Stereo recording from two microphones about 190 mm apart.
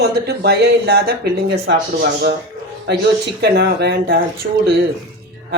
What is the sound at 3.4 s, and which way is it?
Speech, 55° right (ahead or behind).